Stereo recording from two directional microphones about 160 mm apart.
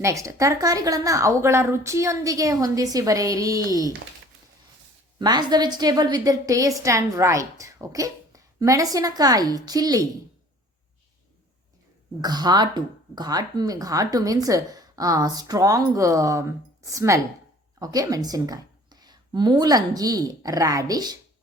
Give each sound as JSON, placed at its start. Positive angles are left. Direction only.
{"t": 0.0, "sound": "speech", "side_deg": -20}
{"t": 5.2, "sound": "speech", "side_deg": -25}
{"t": 12.2, "sound": "speech", "side_deg": -25}